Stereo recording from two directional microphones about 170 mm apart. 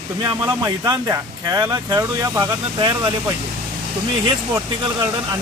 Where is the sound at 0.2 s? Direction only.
25° right (ahead or behind).